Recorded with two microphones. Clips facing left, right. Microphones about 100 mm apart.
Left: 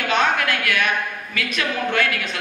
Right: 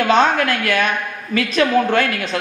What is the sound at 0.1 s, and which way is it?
A man's voice, 35° right (ahead or behind).